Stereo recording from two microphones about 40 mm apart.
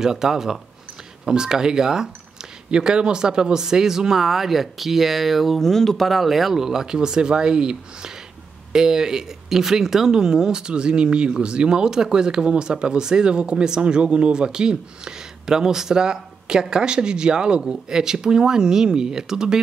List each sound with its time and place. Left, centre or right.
0.0 s speech: centre
6.0 s speech: centre